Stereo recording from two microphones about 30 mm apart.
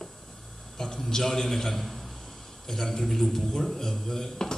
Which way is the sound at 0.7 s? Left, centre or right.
Centre.